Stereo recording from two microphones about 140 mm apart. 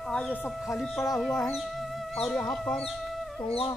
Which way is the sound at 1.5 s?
Centre (ahead or behind).